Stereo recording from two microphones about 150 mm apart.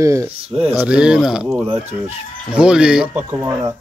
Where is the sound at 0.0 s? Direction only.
20° right (ahead or behind).